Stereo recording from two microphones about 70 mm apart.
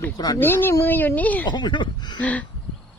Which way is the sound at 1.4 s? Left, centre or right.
Left.